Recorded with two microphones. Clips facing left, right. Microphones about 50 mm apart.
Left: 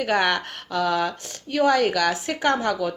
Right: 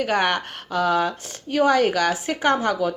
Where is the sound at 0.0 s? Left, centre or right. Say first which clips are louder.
Even; centre.